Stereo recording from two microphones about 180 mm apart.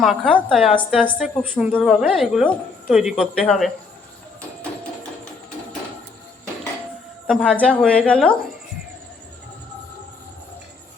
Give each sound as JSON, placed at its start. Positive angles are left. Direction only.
{"t": 0.0, "sound": "a woman's voice", "side_deg": 0}
{"t": 7.3, "sound": "a woman's voice", "side_deg": 5}